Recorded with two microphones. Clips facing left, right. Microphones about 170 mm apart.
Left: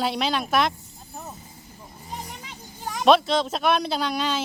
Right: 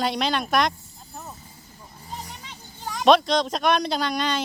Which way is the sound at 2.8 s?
5° left (ahead or behind).